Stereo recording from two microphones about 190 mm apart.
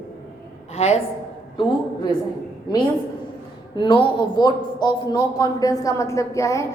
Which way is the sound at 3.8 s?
25° left (ahead or behind).